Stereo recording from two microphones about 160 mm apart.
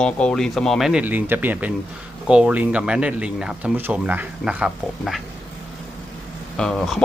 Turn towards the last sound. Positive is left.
turn(degrees=0)  # may be behind; listen again after turning